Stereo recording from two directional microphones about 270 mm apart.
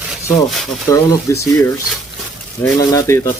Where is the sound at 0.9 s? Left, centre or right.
Centre.